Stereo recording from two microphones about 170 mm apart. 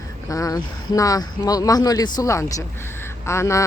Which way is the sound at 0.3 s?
20° left (ahead or behind).